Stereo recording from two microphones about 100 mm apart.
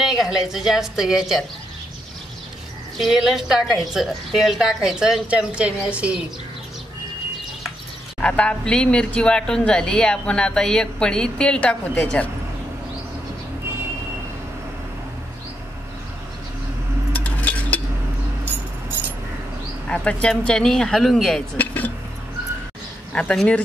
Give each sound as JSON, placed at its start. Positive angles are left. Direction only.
{"t": 0.0, "sound": "a woman's voice", "side_deg": 0}
{"t": 3.0, "sound": "a woman's voice", "side_deg": 0}
{"t": 8.2, "sound": "speech", "side_deg": 10}
{"t": 17.1, "sound": "a sound", "side_deg": 15}
{"t": 19.9, "sound": "speech", "side_deg": 10}
{"t": 21.5, "sound": "a sound", "side_deg": 15}
{"t": 23.1, "sound": "speech", "side_deg": 10}